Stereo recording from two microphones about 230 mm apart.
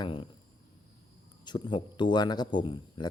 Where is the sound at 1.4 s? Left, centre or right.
Centre.